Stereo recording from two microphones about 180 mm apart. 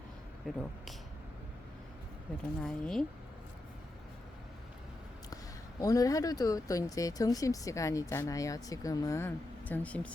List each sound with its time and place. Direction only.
0.4 s speech: centre (ahead or behind)
2.6 s speech: 5° left (ahead or behind)
5.8 s speech: 20° left (ahead or behind)